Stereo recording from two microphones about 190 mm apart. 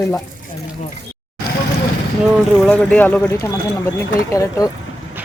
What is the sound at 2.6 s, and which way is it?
Speech, 5° left (ahead or behind).